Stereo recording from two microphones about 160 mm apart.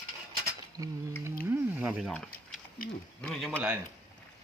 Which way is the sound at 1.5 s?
10° right (ahead or behind).